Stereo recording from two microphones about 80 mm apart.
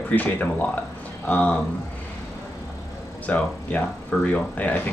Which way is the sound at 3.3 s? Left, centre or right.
Centre.